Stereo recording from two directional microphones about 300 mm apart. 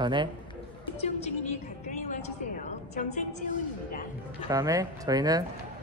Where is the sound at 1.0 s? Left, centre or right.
Left.